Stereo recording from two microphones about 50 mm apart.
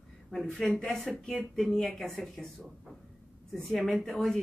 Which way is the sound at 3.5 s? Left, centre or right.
Centre.